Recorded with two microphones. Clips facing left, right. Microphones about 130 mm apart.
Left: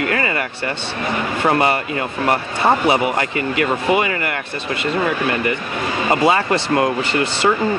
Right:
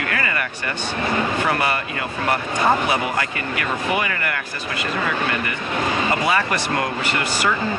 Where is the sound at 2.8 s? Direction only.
20° left (ahead or behind).